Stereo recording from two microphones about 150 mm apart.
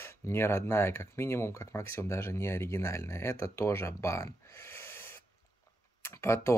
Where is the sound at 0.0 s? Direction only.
15° left (ahead or behind).